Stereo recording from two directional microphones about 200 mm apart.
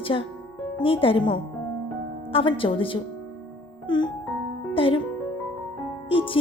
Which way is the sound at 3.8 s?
25° left (ahead or behind).